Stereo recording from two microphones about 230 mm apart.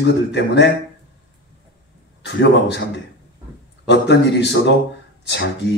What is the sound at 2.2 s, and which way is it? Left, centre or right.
Speech, left.